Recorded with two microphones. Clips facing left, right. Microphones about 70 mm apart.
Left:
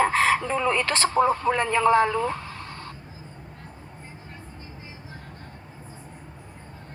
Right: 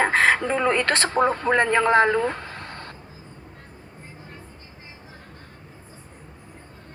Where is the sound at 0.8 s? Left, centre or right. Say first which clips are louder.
Right 3 dB; right.